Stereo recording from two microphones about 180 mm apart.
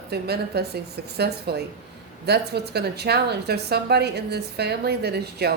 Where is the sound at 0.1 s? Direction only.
65° right (ahead or behind).